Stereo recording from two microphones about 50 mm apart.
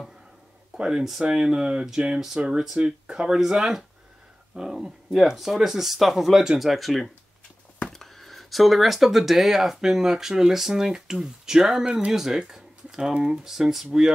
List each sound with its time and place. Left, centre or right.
0.7 s speech: centre